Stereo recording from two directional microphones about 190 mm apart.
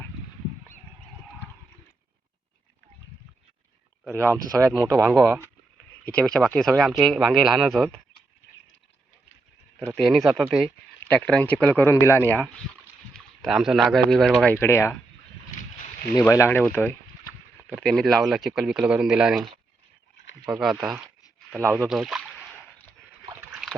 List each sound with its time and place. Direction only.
4.1 s speech: 15° right (ahead or behind)
6.1 s speech: 5° left (ahead or behind)
9.8 s speech: 5° left (ahead or behind)
13.1 s speech: centre (ahead or behind)
16.2 s speech: 15° left (ahead or behind); by 19.5 s 5° right (ahead or behind)
20.5 s speech: centre (ahead or behind)
23.5 s a sound: centre (ahead or behind)